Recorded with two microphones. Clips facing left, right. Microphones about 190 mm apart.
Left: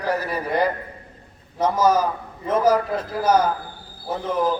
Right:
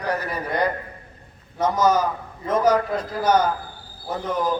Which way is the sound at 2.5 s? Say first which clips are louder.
Left 1 dB; 5° left (ahead or behind).